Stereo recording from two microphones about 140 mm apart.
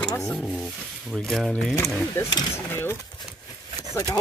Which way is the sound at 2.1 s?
15° left (ahead or behind).